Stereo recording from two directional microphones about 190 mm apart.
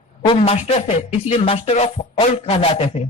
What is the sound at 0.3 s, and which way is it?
Speech, 30° left (ahead or behind).